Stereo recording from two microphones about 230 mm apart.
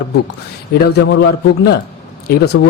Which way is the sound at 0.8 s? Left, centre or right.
Left.